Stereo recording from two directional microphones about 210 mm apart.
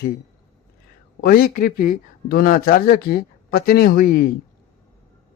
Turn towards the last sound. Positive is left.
turn(degrees=45)  # may be behind; listen again after turning